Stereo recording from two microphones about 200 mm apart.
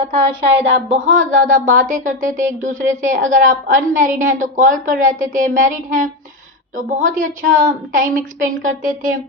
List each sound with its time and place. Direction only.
0.5 s speech: 30° right (ahead or behind)
1.1 s speech: 40° right (ahead or behind)